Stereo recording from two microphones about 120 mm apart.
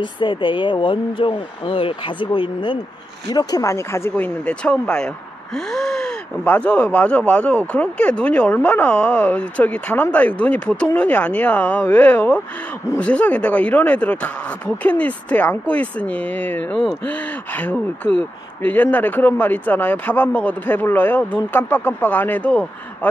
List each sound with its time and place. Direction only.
0.0 s speech: 45° left (ahead or behind); by 4.3 s 20° left (ahead or behind)
4.5 s speech: 10° left (ahead or behind)